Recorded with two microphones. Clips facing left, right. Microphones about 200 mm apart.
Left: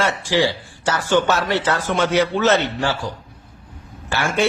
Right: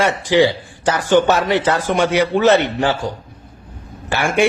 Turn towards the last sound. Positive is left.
turn(degrees=-15)  # may be behind; listen again after turning